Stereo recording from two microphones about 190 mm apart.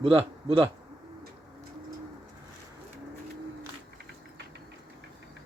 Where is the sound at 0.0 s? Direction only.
30° right (ahead or behind).